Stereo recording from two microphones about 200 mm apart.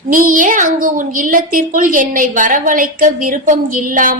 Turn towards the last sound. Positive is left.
turn(degrees=-45)  # may be behind; listen again after turning